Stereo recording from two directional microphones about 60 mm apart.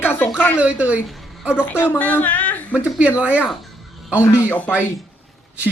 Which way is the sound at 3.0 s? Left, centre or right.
Right.